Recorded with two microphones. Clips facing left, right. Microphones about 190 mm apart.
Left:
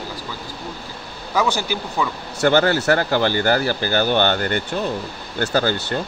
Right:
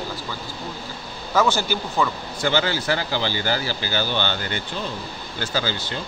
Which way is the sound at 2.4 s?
55° left (ahead or behind).